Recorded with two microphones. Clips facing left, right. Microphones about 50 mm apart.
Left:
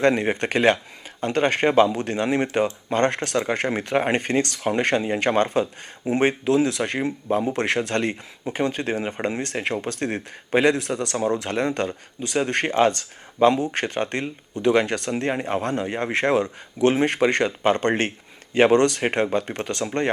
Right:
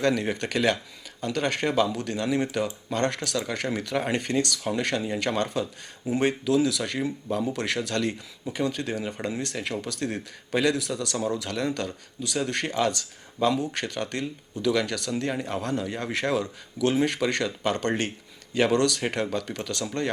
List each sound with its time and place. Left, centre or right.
0.0 s speech: left